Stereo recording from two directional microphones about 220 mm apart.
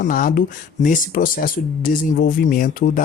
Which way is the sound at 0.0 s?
40° left (ahead or behind).